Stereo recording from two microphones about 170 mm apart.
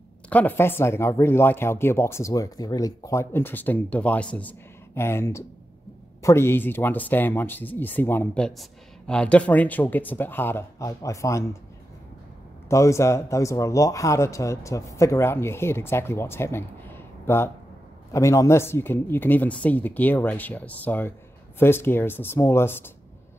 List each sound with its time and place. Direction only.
0.3 s speech: 10° left (ahead or behind)
12.6 s speech: 15° left (ahead or behind)